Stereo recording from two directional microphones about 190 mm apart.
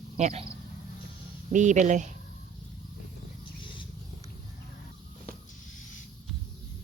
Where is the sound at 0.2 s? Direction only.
35° right (ahead or behind).